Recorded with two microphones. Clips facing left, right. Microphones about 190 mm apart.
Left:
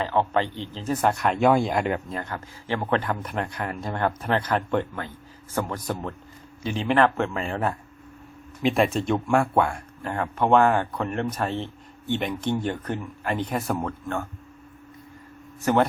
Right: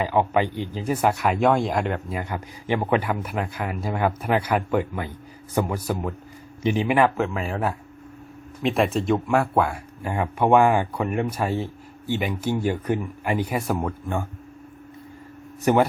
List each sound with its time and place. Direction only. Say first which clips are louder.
0.0 s speech: right 2 dB; 10° right (ahead or behind)
2.1 s speech: right 3 dB; 15° right (ahead or behind)
15.6 s speech: right 2 dB; 15° right (ahead or behind)